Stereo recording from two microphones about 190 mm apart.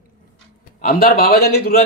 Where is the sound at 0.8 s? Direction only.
50° left (ahead or behind).